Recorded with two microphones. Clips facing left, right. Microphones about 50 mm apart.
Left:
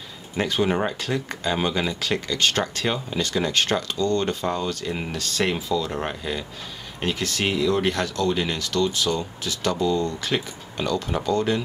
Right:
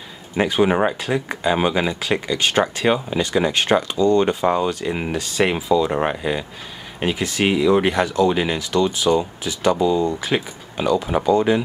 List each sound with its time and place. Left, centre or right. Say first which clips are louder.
0.4 s speech: right 5 dB; centre